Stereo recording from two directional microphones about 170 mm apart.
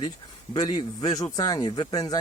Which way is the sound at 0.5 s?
25° left (ahead or behind).